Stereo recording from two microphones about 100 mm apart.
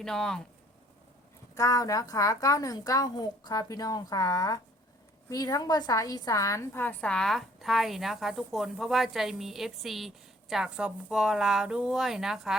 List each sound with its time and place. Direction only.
0.0 s a woman's voice: 5° left (ahead or behind)
1.5 s a woman's voice: 35° left (ahead or behind)
6.7 s a woman's voice: 15° left (ahead or behind); by 12.5 s 5° right (ahead or behind)